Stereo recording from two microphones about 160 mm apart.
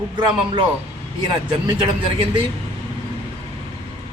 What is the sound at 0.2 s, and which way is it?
Speech, 25° right (ahead or behind).